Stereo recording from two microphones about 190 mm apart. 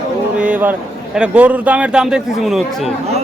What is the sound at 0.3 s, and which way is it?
Speech, 5° right (ahead or behind).